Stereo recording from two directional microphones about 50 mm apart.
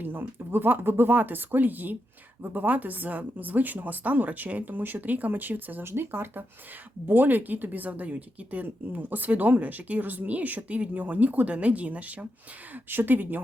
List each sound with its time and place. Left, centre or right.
0.0 s speech: right
5.8 s speech: right
12.7 s speech: right